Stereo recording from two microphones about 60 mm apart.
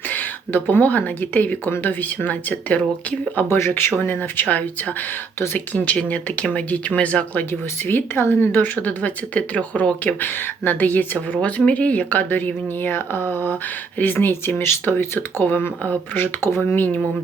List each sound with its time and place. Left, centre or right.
0.1 s speech: left
3.5 s a woman's voice: left
7.9 s a woman's voice: left
16.6 s speech: left